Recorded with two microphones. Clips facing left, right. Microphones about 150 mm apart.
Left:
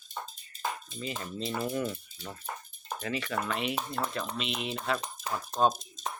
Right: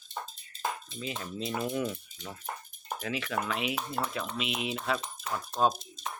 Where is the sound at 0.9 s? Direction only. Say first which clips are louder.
Even; centre (ahead or behind).